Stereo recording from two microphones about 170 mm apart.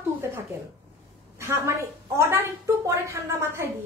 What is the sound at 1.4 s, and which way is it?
A woman's voice, 15° right (ahead or behind).